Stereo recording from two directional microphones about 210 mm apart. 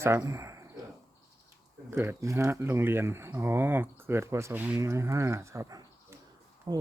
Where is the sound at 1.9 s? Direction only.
10° right (ahead or behind).